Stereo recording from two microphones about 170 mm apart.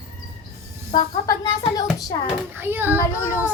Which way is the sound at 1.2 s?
20° left (ahead or behind).